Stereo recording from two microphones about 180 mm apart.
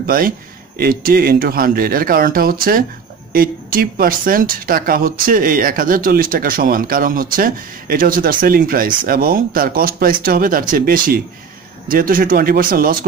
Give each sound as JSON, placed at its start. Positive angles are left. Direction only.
{"t": 0.0, "sound": "a woman's voice", "side_deg": -55}